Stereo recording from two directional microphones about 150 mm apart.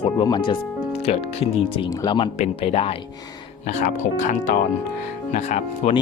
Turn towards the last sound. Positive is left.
turn(degrees=50)  # may be behind; listen again after turning